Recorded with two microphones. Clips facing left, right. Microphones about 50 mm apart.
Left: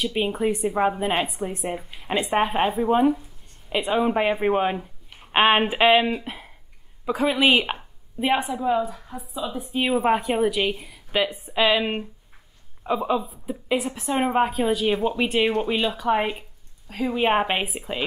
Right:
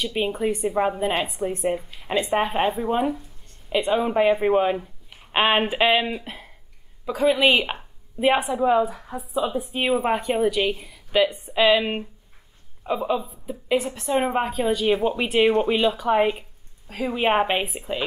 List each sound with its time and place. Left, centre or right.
0.0 s a woman's voice: centre
1.8 s a woman's voice: centre
15.4 s speech: centre
15.8 s a woman's voice: centre